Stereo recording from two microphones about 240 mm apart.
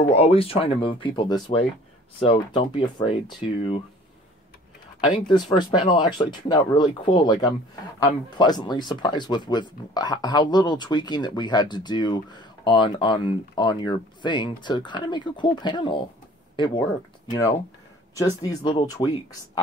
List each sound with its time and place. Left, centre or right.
0.1 s speech: left
5.0 s speech: centre